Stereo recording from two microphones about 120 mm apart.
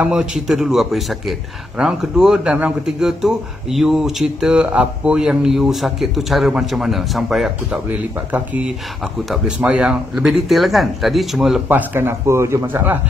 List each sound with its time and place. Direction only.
0.0 s speech: 5° right (ahead or behind)
11.7 s speech: 15° right (ahead or behind)